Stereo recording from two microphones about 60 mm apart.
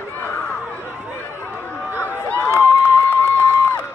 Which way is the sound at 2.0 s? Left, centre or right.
Left.